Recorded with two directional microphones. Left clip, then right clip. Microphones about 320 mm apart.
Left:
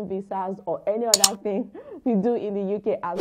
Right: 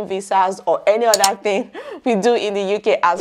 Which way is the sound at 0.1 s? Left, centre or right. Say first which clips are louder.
Right 14 dB; centre.